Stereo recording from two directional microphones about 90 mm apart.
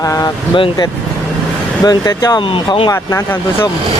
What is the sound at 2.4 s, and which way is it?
Speech, 75° left (ahead or behind).